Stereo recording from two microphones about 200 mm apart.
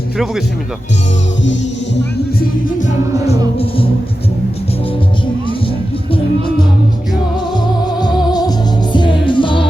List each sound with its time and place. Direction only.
2.7 s music: 35° left (ahead or behind)
7.5 s music: 20° left (ahead or behind)